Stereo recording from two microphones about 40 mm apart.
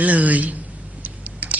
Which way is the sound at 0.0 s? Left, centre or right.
Right.